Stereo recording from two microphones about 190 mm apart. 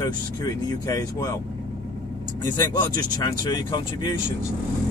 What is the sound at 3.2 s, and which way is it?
Speech, 20° left (ahead or behind).